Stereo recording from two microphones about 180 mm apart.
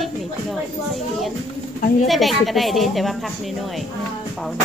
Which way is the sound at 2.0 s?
Centre (ahead or behind).